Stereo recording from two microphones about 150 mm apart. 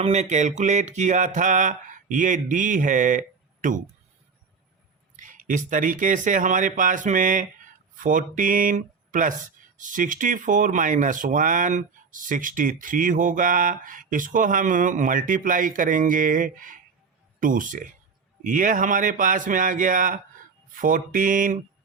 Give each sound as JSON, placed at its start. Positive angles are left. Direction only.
{"t": 0.0, "sound": "speech", "side_deg": -50}
{"t": 5.1, "sound": "speech", "side_deg": -60}